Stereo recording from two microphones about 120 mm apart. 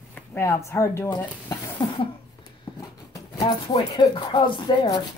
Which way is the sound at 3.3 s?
45° left (ahead or behind).